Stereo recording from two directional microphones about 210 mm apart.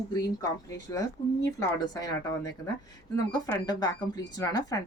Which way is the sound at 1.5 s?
15° left (ahead or behind).